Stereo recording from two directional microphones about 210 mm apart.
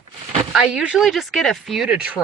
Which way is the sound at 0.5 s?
5° right (ahead or behind).